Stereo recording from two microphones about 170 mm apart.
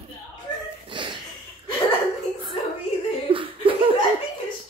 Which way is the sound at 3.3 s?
30° right (ahead or behind).